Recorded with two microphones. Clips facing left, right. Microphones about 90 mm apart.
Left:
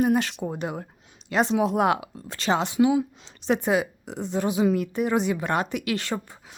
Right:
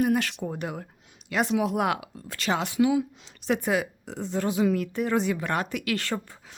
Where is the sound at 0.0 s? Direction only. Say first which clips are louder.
Left 2 dB; 25° left (ahead or behind).